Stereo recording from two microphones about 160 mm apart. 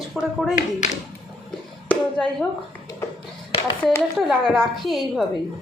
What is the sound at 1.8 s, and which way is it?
Speech, 5° left (ahead or behind).